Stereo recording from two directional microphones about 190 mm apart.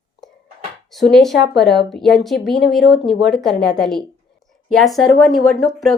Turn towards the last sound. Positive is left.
turn(degrees=0)  # may be behind; listen again after turning